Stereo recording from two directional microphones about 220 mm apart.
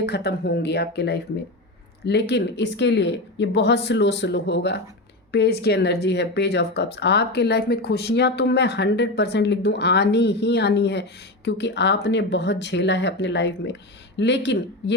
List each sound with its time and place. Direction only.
0.0 s speech: 50° left (ahead or behind)